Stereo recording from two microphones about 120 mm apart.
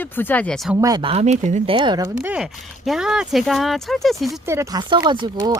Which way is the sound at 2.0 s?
20° right (ahead or behind).